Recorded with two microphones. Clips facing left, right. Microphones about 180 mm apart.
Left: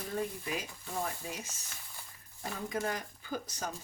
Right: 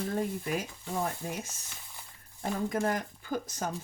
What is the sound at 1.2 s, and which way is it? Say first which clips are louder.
Speech: right 5 dB; 45° right (ahead or behind).